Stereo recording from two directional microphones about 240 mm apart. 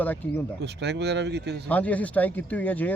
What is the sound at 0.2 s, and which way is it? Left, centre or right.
Speech, centre.